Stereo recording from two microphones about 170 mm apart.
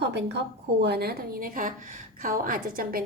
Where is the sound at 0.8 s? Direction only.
70° right (ahead or behind).